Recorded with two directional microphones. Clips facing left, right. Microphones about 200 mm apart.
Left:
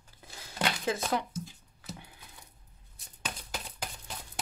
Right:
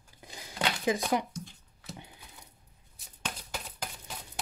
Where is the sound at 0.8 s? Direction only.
15° right (ahead or behind).